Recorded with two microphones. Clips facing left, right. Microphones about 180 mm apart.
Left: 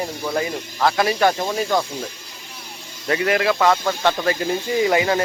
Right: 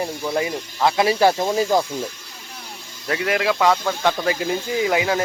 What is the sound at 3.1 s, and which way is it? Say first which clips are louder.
Speech: left 2 dB; centre (ahead or behind).